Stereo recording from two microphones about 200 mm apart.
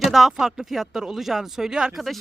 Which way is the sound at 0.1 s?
Centre (ahead or behind).